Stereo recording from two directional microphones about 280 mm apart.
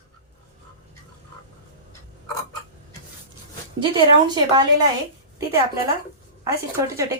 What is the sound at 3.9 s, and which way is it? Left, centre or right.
A woman's voice, centre.